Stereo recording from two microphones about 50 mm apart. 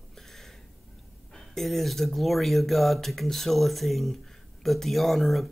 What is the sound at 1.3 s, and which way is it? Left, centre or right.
Speech, centre.